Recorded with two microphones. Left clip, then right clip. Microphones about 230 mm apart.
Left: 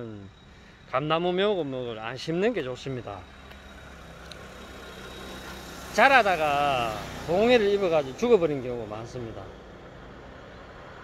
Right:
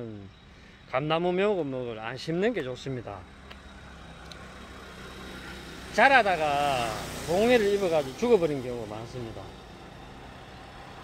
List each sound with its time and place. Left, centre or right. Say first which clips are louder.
0.9 s speech: left 1 dB; centre
5.0 s vehicle: left 1 dB; left
5.9 s speech: left 1 dB; centre